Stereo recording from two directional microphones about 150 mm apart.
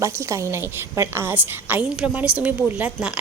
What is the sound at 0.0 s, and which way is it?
A woman's voice, 20° right (ahead or behind).